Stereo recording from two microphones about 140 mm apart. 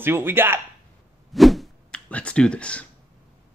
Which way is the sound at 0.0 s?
15° right (ahead or behind).